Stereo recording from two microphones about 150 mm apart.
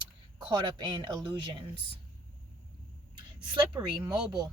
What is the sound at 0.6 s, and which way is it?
Speech, 30° right (ahead or behind).